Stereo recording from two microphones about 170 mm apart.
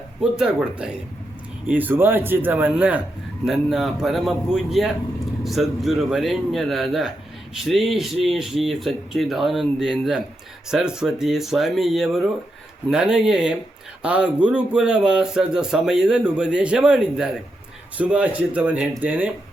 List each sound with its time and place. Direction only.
0.2 s speech: 5° right (ahead or behind)